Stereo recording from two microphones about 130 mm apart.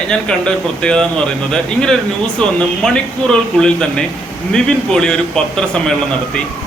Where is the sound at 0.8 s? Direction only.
5° left (ahead or behind).